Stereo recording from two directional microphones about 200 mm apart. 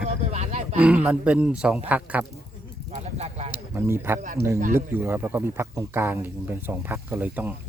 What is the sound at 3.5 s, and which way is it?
Speech, 10° right (ahead or behind).